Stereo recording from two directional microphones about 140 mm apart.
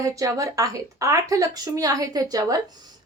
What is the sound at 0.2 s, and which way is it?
A woman's voice, 25° right (ahead or behind).